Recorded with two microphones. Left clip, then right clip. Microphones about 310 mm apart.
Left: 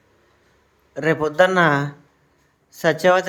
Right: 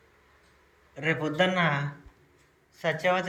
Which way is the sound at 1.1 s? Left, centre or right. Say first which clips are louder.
Left 10 dB; centre.